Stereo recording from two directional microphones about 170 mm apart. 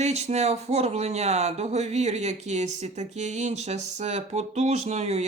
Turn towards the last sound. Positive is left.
turn(degrees=-40)  # may be behind; listen again after turning